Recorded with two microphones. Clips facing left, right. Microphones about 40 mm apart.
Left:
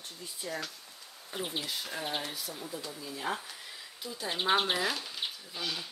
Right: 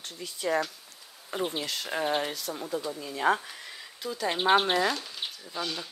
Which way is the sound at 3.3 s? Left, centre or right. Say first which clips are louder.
Right 10 dB; right.